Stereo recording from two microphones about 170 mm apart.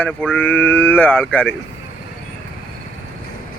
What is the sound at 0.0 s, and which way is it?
Speech, 10° left (ahead or behind).